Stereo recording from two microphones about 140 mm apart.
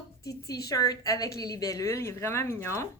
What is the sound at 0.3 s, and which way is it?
A woman's voice, 25° left (ahead or behind).